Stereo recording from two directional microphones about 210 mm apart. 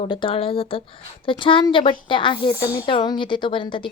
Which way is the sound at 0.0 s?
25° left (ahead or behind).